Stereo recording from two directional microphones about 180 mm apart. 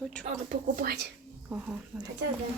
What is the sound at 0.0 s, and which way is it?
Speech, 5° left (ahead or behind).